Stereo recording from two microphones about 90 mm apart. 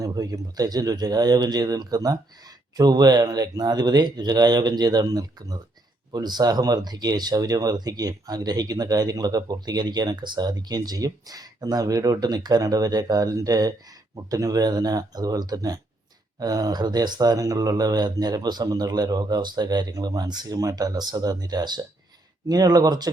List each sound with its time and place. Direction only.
0.0 s speech: 45° right (ahead or behind)